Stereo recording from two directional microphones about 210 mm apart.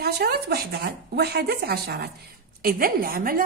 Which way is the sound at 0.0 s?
50° right (ahead or behind).